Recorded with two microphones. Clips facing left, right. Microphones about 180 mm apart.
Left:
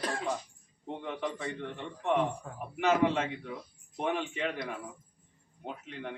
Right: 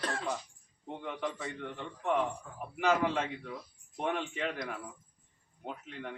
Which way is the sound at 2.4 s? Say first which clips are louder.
Left 5 dB; 45° left (ahead or behind).